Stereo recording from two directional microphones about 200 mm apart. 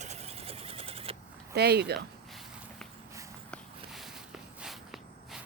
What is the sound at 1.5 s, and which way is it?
Speech, 55° right (ahead or behind).